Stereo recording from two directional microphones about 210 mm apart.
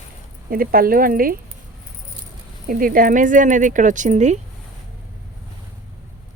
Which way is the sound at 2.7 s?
40° right (ahead or behind).